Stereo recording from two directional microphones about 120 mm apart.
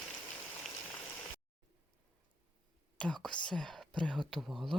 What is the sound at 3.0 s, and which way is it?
Speech, 10° left (ahead or behind).